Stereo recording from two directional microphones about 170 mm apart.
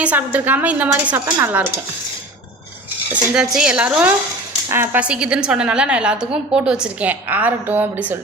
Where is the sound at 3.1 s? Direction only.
5° right (ahead or behind).